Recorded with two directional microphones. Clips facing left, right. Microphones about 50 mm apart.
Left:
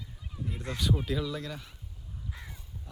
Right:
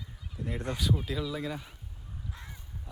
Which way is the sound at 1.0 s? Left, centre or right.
Centre.